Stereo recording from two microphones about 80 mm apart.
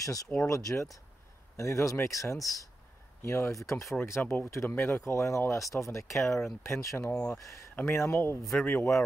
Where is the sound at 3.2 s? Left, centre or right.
Left.